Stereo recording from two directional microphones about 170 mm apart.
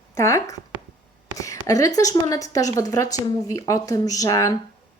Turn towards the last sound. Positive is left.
turn(degrees=20)  # may be behind; listen again after turning